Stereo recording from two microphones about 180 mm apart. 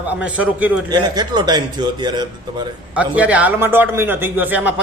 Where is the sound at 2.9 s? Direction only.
5° right (ahead or behind).